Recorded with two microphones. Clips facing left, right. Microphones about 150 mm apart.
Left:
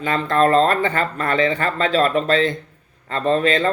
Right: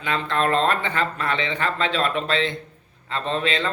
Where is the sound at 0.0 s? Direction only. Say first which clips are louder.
Left 6 dB; 40° left (ahead or behind).